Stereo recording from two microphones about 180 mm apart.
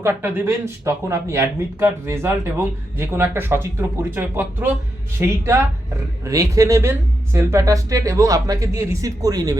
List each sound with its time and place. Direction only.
0.0 s speech: 10° right (ahead or behind)